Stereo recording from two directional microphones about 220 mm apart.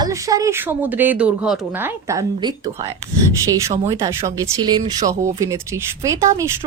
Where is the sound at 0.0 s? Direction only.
15° right (ahead or behind).